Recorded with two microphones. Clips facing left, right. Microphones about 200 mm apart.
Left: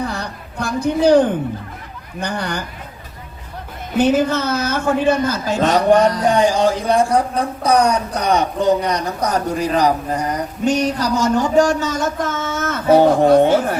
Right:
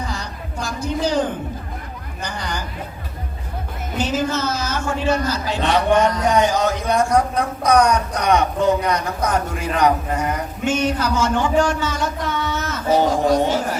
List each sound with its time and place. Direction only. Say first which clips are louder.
0.0 s a sound: left 4 dB; 60° left (ahead or behind)
2.2 s speech: left 5 dB; 60° left (ahead or behind)
3.9 s a man's voice: left 6 dB; 60° left (ahead or behind)